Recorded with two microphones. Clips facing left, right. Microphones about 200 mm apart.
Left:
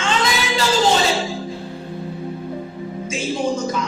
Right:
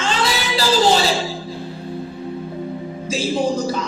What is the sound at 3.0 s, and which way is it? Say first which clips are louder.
Music: right 2 dB; 35° right (ahead or behind).